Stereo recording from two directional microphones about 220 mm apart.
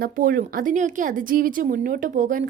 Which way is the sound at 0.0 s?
40° right (ahead or behind).